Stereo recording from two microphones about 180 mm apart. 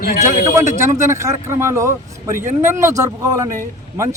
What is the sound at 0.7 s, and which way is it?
Speech, 15° right (ahead or behind).